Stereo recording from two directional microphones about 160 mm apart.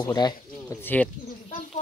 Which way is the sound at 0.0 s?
25° left (ahead or behind).